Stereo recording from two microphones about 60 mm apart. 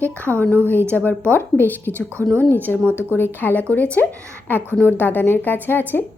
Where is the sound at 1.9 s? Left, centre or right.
Right.